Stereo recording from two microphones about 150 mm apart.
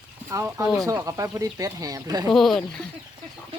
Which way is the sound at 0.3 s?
20° right (ahead or behind).